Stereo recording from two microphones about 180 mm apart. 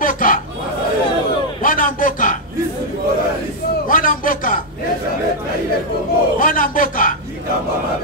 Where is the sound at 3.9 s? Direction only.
50° left (ahead or behind).